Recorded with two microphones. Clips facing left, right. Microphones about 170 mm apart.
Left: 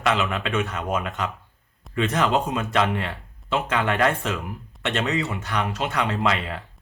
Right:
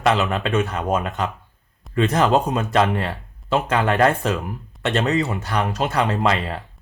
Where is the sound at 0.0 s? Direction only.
35° right (ahead or behind).